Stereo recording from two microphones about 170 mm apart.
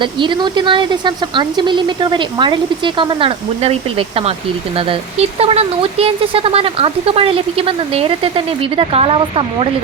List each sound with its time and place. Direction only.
0.0 s speech: 30° right (ahead or behind)